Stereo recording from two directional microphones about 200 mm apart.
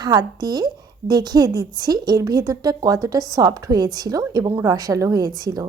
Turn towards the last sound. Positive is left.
turn(degrees=-20)  # may be behind; listen again after turning